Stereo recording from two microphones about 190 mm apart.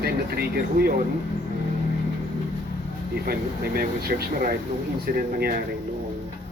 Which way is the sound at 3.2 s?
50° right (ahead or behind).